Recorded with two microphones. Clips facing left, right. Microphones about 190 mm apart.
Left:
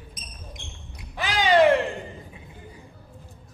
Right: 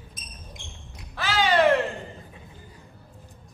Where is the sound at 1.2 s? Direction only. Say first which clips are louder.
Left 2 dB; 15° left (ahead or behind).